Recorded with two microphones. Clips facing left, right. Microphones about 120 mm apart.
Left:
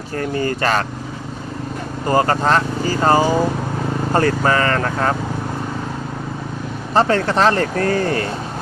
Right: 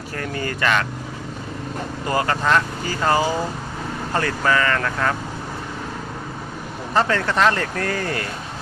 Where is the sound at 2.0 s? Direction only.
35° left (ahead or behind).